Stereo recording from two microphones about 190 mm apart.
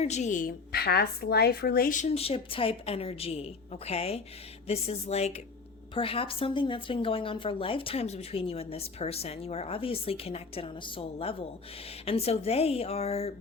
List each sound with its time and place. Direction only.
0.0 s a woman's voice: 35° left (ahead or behind)